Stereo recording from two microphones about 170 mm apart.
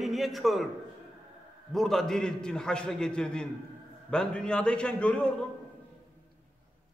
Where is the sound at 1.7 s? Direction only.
Centre (ahead or behind).